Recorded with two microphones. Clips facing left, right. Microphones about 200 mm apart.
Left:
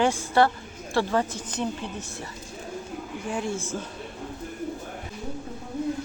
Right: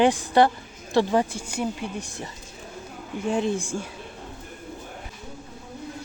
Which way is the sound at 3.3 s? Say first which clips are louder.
Right 4 dB; 20° right (ahead or behind).